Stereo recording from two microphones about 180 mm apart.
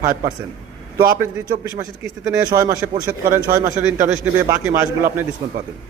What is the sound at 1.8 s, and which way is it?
A man's voice, 15° right (ahead or behind).